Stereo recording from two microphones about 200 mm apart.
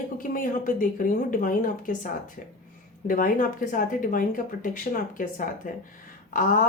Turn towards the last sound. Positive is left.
turn(degrees=40)  # may be behind; listen again after turning